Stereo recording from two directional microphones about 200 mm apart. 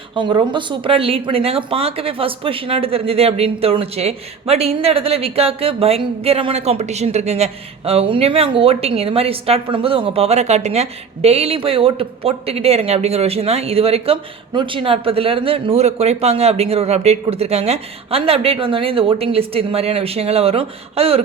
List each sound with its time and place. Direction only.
0.1 s speech: 25° right (ahead or behind)